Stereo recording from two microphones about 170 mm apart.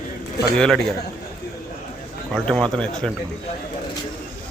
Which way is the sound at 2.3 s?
5° left (ahead or behind).